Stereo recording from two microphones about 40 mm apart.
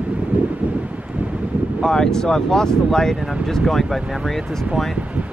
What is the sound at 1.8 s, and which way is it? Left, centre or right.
Speech, centre.